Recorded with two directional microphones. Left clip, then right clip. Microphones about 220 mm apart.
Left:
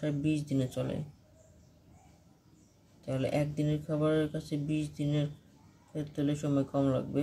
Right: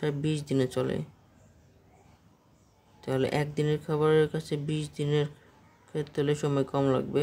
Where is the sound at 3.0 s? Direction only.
50° right (ahead or behind).